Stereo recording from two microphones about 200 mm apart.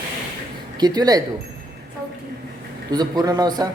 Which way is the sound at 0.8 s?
20° right (ahead or behind).